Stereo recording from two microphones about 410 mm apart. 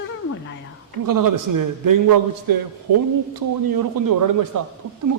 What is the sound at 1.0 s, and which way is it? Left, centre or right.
Speech, right.